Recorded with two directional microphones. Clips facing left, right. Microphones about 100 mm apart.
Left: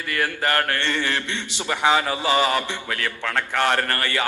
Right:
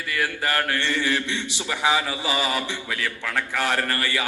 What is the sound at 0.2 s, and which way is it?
Mantra, 35° left (ahead or behind).